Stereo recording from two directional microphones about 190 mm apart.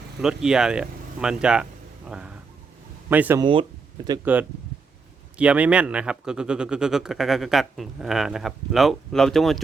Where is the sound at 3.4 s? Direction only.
25° right (ahead or behind).